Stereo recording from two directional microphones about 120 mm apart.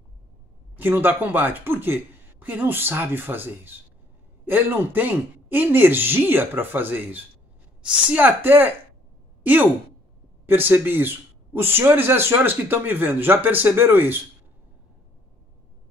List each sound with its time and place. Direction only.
0.7 s speech: 15° right (ahead or behind)